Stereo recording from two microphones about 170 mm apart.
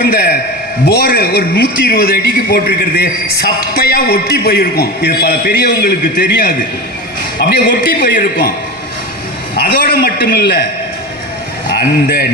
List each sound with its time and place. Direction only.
0.0 s a sound: 65° left (ahead or behind)
0.9 s a man's voice: 65° left (ahead or behind)
9.6 s a man's voice: 65° left (ahead or behind)
11.7 s a man's voice: 60° left (ahead or behind)